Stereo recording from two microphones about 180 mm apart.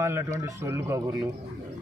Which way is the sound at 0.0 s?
15° right (ahead or behind).